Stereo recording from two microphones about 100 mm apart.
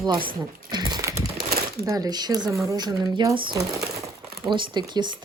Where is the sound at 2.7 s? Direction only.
45° right (ahead or behind).